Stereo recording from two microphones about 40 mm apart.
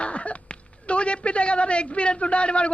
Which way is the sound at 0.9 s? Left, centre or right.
Left.